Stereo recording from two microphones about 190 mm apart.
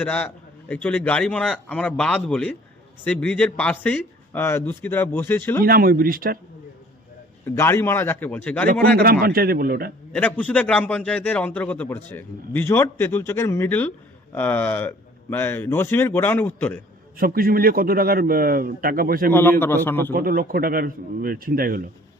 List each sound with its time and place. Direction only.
0.0 s a man's voice: 10° left (ahead or behind)
5.6 s a man's voice: 50° right (ahead or behind)
7.4 s a man's voice: 15° left (ahead or behind)
9.0 s a man's voice: 50° right (ahead or behind)
10.1 s a man's voice: 10° left (ahead or behind)
17.2 s a man's voice: 50° right (ahead or behind)
19.3 s a man's voice: 10° left (ahead or behind)
20.1 s a man's voice: 50° right (ahead or behind)